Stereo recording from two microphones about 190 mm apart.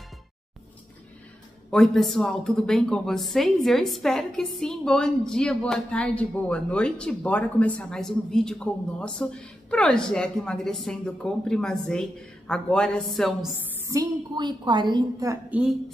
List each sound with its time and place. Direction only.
1.7 s a woman's voice: 5° left (ahead or behind)
13.8 s a woman's voice: 20° right (ahead or behind)